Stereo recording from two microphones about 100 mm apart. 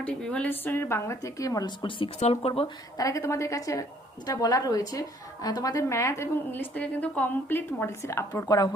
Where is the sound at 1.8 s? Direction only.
60° left (ahead or behind).